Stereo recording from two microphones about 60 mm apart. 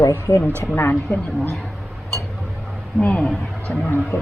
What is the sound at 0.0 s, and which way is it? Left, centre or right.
Speech, left.